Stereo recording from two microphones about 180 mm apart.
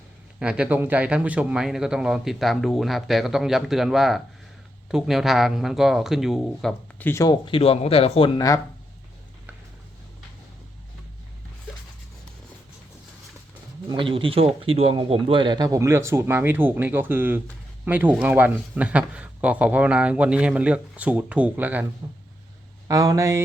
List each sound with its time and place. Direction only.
0.3 s a man's voice: 5° right (ahead or behind)
7.1 s speech: 20° left (ahead or behind)
8.4 s speech: 20° left (ahead or behind)
13.8 s a man's voice: 30° right (ahead or behind); by 21.8 s 10° right (ahead or behind)
22.9 s a man's voice: 20° right (ahead or behind)